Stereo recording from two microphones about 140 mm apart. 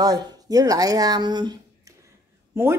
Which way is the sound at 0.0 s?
30° right (ahead or behind).